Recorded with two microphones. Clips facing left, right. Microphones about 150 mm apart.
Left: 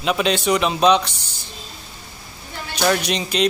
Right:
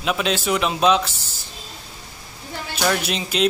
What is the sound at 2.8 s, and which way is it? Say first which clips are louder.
Speech: left 3 dB; centre (ahead or behind).